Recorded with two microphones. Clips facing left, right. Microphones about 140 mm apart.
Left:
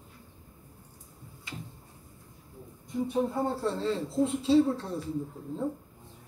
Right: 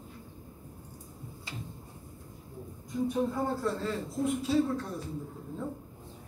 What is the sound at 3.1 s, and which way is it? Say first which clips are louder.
Speech: left 3 dB; 30° left (ahead or behind).